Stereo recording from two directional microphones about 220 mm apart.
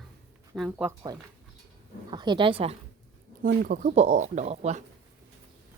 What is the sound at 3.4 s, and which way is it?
Speech, 40° right (ahead or behind).